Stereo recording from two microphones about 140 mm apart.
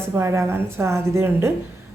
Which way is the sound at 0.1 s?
20° right (ahead or behind).